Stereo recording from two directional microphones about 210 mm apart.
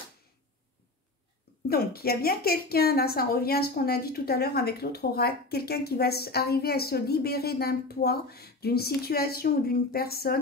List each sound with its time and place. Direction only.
1.7 s a woman's voice: 45° left (ahead or behind)